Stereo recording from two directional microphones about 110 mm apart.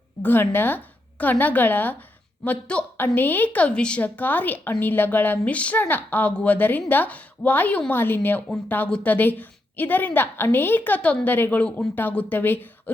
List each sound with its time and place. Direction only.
0.2 s a woman's voice: 20° left (ahead or behind)